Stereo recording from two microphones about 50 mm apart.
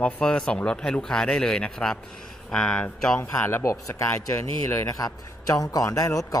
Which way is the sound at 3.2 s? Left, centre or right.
Left.